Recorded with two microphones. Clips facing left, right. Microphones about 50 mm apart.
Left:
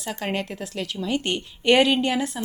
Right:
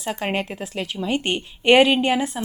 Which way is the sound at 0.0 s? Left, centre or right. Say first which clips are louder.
Right 3 dB; right.